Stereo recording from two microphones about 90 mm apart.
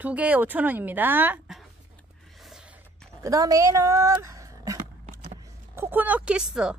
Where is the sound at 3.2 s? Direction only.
40° right (ahead or behind).